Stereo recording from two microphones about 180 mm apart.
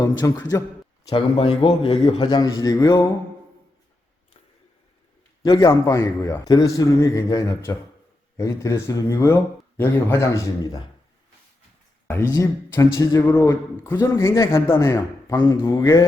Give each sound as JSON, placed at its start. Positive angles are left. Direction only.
{"t": 0.3, "sound": "a man's voice", "side_deg": 20}
{"t": 5.4, "sound": "a man's voice", "side_deg": 20}
{"t": 12.3, "sound": "a man's voice", "side_deg": 15}